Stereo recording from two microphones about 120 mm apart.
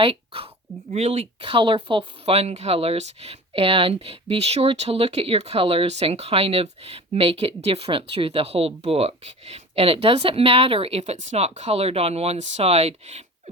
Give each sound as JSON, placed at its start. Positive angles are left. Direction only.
{"t": 0.0, "sound": "speech", "side_deg": -50}
{"t": 0.9, "sound": "speech", "side_deg": -70}